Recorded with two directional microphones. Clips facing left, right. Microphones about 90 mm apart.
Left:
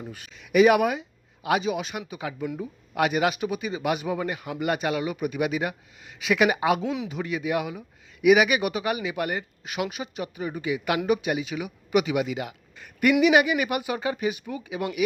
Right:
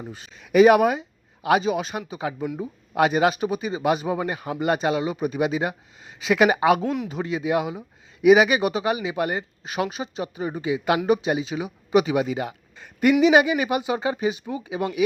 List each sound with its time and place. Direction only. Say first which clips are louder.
0.0 s speech: right 2 dB; 30° right (ahead or behind); by 6.8 s 45° right (ahead or behind)
7.1 s speech: right 3 dB; 30° right (ahead or behind)